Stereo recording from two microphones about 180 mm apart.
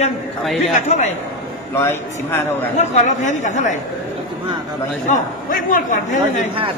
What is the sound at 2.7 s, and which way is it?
Speech, 40° left (ahead or behind).